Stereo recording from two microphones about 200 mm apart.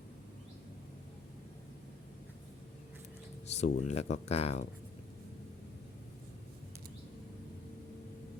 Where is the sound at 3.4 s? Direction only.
35° left (ahead or behind).